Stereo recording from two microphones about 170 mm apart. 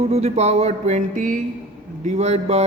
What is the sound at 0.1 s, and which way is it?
A man's voice, 40° right (ahead or behind).